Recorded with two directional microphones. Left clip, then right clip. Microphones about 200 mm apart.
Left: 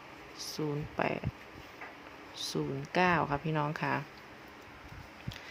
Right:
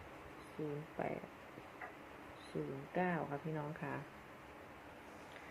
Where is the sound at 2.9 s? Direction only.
50° left (ahead or behind).